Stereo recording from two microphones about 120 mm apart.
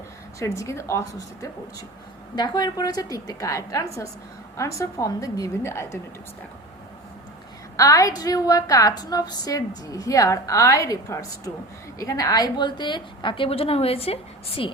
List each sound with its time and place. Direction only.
0.3 s a woman's voice: 25° left (ahead or behind)
2.3 s a woman's voice: 35° left (ahead or behind); by 6.0 s 20° left (ahead or behind)
7.8 s a woman's voice: 30° left (ahead or behind); by 14.7 s 55° left (ahead or behind)